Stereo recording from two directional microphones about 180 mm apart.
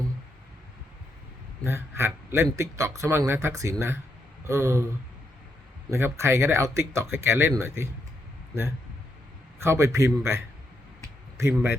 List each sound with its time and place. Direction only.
1.6 s a man's voice: 15° right (ahead or behind)
5.9 s a man's voice: 15° right (ahead or behind)
9.6 s a man's voice: 15° right (ahead or behind)